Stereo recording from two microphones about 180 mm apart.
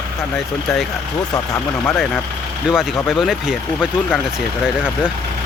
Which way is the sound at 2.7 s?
5° right (ahead or behind).